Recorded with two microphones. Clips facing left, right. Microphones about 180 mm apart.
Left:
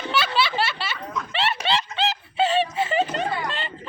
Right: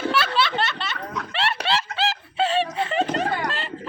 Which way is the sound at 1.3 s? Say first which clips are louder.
Even; centre (ahead or behind).